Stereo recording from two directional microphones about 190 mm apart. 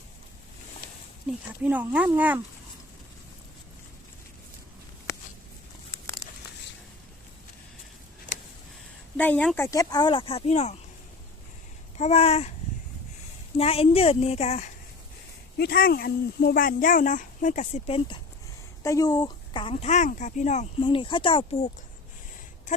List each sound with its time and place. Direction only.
1.6 s speech: 10° right (ahead or behind)
9.1 s speech: 5° left (ahead or behind)
9.6 s speech: 20° left (ahead or behind); by 10.8 s 35° left (ahead or behind)
11.9 s a woman's voice: 35° left (ahead or behind)
13.6 s a woman's voice: 30° left (ahead or behind)
15.5 s speech: 55° left (ahead or behind); by 18.2 s 30° left (ahead or behind)
18.8 s speech: 15° left (ahead or behind)